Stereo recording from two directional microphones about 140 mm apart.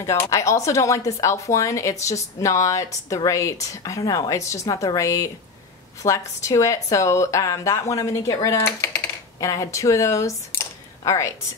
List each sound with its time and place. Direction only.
0.0 s speech: 20° left (ahead or behind)